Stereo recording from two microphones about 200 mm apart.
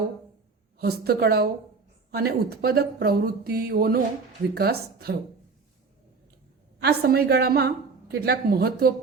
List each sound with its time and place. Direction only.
0.8 s a woman's voice: 50° right (ahead or behind)
6.8 s a woman's voice: 50° right (ahead or behind)